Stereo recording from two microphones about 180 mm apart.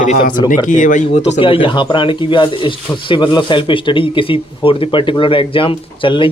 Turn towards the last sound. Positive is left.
turn(degrees=30)  # may be behind; listen again after turning